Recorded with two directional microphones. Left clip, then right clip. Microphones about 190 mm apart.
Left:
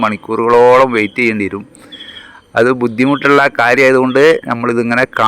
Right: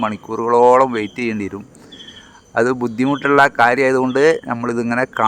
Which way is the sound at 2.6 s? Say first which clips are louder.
Left 6 dB; 15° left (ahead or behind).